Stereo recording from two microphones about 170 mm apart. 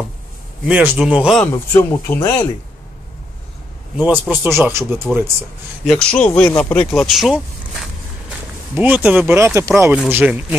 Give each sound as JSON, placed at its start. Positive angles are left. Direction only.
{"t": 0.7, "sound": "speech", "side_deg": -5}
{"t": 1.5, "sound": "speech", "side_deg": 15}
{"t": 3.9, "sound": "speech", "side_deg": -10}
{"t": 4.5, "sound": "speech", "side_deg": 0}
{"t": 4.7, "sound": "speech", "side_deg": -15}
{"t": 5.9, "sound": "speech", "side_deg": 5}
{"t": 8.7, "sound": "speech", "side_deg": -10}